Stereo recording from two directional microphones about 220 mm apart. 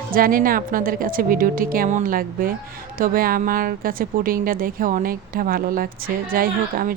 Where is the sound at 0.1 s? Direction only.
40° right (ahead or behind).